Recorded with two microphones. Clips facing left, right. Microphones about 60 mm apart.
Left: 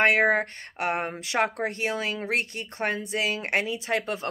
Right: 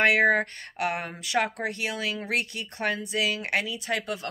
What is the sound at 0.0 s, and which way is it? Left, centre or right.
Speech, left.